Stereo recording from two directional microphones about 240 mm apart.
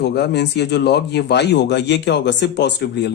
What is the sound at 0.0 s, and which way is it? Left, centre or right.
Speech, left.